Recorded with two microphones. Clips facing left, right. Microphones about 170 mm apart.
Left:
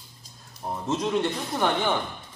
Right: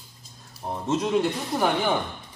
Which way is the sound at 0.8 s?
5° right (ahead or behind).